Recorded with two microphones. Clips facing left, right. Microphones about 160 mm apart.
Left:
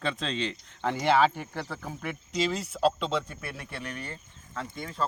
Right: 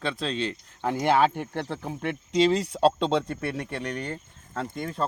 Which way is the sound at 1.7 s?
25° right (ahead or behind).